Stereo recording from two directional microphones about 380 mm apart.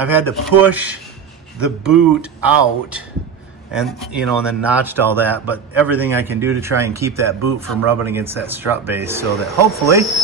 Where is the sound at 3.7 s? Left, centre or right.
Centre.